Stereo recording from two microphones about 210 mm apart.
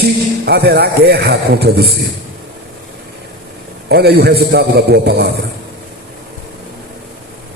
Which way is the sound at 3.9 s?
50° right (ahead or behind).